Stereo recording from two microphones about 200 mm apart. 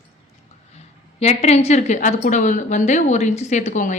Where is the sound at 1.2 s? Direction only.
35° left (ahead or behind).